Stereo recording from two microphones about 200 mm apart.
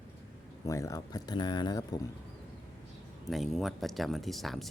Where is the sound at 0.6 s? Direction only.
15° left (ahead or behind).